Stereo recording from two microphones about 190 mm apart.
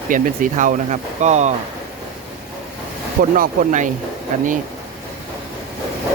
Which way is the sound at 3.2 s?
45° right (ahead or behind).